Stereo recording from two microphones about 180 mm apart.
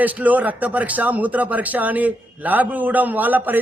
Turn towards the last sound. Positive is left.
turn(degrees=-10)  # may be behind; listen again after turning